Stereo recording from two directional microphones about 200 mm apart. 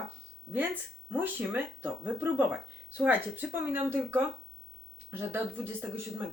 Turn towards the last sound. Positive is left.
turn(degrees=-10)  # may be behind; listen again after turning